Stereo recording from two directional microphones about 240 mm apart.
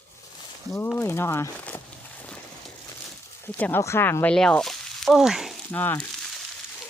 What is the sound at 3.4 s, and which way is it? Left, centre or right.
Speech, centre.